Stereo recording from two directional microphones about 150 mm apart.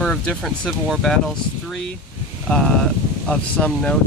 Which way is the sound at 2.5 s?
5° left (ahead or behind).